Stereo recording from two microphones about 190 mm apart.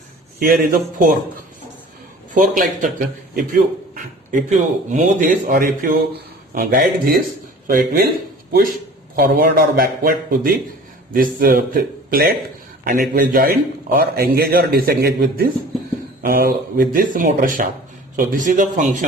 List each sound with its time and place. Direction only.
0.3 s a man's voice: 50° right (ahead or behind)
2.3 s a man's voice: 40° right (ahead or behind)
9.1 s a man's voice: 50° right (ahead or behind)